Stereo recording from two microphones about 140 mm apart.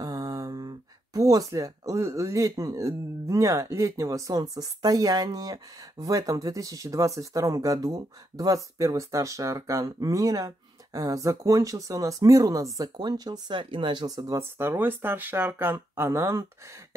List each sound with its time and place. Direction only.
0.0 s speech: 25° right (ahead or behind)